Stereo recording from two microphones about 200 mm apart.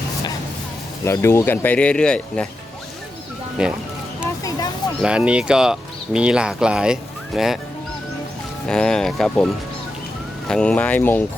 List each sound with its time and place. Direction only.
1.0 s speech: 15° left (ahead or behind)
3.6 s speech: 5° right (ahead or behind)
4.2 s vehicle: 15° left (ahead or behind)
5.0 s speech: 5° right (ahead or behind)
8.6 s speech: 5° left (ahead or behind)
10.5 s speech: 5° left (ahead or behind)